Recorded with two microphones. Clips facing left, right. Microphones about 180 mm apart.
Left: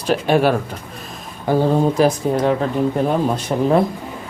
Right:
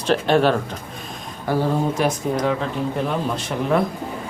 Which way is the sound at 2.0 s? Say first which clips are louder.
Left 5 dB; 35° left (ahead or behind).